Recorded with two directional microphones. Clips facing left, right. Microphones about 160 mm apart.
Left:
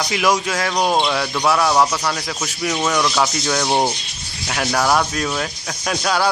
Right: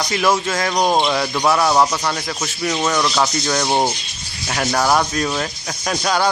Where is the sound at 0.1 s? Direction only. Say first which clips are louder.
Right 1 dB; 10° left (ahead or behind).